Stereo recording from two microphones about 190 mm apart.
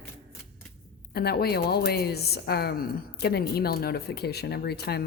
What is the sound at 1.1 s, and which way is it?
A woman's voice, 55° left (ahead or behind).